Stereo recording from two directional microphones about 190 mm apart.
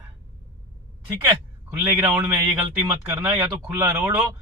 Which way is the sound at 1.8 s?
10° right (ahead or behind).